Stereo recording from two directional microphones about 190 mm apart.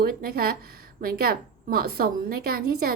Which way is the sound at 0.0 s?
50° right (ahead or behind).